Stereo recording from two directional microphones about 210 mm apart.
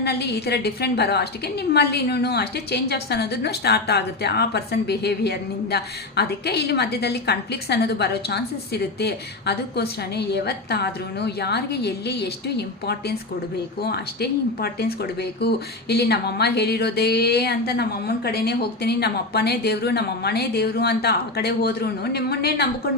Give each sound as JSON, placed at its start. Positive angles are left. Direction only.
{"t": 0.0, "sound": "a woman's voice", "side_deg": 50}